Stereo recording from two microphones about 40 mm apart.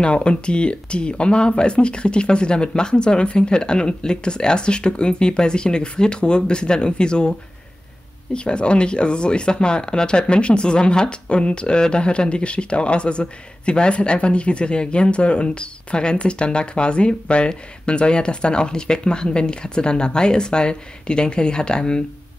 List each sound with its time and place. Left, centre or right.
0.0 s speech: left